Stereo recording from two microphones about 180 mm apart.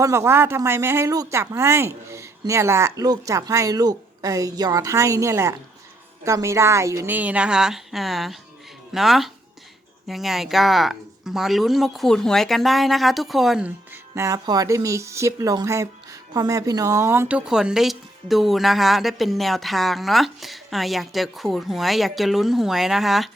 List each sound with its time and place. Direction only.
0.0 s speech: 15° right (ahead or behind)
14.2 s speech: 20° right (ahead or behind); by 23.3 s centre (ahead or behind)